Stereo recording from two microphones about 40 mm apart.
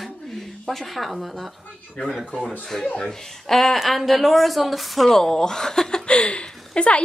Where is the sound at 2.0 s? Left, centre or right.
Left.